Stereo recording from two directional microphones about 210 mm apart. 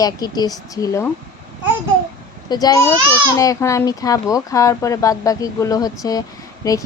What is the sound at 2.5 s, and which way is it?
A child's voice, 20° left (ahead or behind).